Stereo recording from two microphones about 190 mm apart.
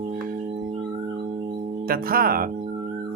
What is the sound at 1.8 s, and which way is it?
Speech, 50° right (ahead or behind).